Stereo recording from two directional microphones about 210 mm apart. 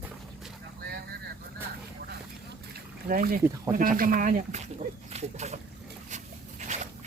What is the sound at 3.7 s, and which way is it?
Speech, 40° right (ahead or behind).